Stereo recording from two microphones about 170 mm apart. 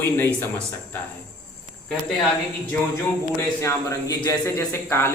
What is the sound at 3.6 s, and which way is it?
Speech, 20° left (ahead or behind).